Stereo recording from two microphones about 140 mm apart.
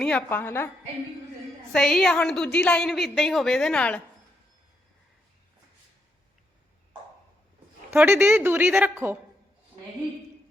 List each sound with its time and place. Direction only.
0.0 s a woman's voice: 10° left (ahead or behind)
1.7 s a woman's voice: centre (ahead or behind)
7.9 s a woman's voice: 15° right (ahead or behind)